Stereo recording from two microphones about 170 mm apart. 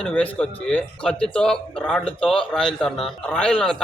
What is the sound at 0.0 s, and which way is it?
A man's voice, 5° left (ahead or behind).